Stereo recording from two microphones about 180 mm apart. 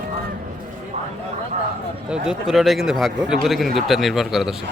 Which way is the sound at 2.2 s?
Centre (ahead or behind).